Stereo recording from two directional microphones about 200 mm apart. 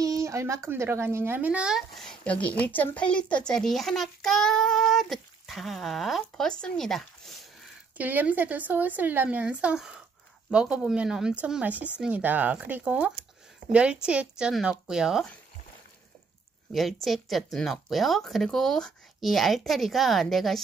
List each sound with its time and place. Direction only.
0.0 s speech: 15° right (ahead or behind)
16.7 s speech: centre (ahead or behind)